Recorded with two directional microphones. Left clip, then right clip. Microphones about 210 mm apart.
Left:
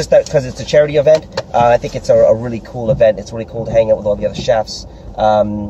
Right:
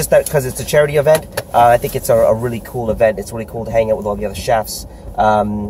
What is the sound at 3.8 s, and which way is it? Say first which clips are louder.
Speech: left 4 dB; 10° left (ahead or behind).